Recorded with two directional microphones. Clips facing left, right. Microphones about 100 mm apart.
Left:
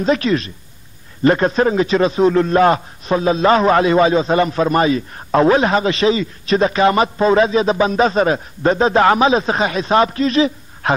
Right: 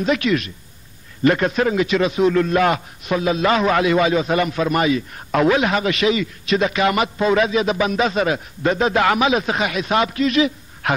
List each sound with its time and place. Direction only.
0.0 s a man's voice: 35° left (ahead or behind)